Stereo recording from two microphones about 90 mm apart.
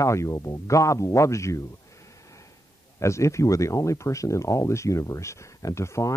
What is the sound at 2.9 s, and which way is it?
Speech, 35° left (ahead or behind).